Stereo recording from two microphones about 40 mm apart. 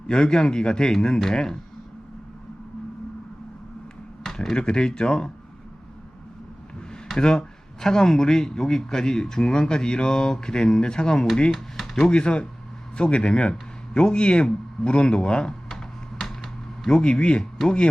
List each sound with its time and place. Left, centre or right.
0.1 s a man's voice: centre
4.2 s a sound: centre
4.5 s a man's voice: left
7.2 s a man's voice: centre
16.2 s a sound: centre
16.9 s a man's voice: left